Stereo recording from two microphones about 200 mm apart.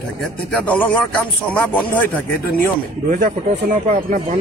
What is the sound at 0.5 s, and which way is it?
Speech, 5° left (ahead or behind).